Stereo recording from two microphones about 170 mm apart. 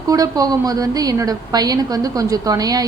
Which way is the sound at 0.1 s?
20° right (ahead or behind).